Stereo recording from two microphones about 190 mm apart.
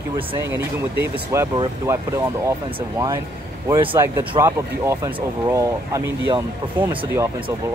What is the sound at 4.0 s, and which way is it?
Speech, 15° right (ahead or behind).